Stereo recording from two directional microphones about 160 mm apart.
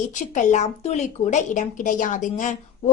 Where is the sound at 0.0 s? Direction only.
50° left (ahead or behind).